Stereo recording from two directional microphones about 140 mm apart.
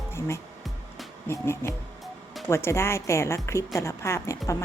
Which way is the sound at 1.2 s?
20° left (ahead or behind).